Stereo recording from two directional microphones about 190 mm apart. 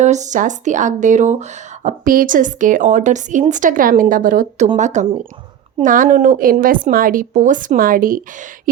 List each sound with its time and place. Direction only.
0.0 s a woman's voice: 40° right (ahead or behind)